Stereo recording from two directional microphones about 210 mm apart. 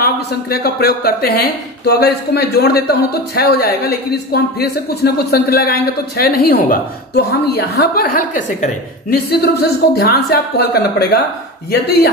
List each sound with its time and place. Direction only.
0.0 s speech: 45° left (ahead or behind)
9.3 s speech: 50° left (ahead or behind)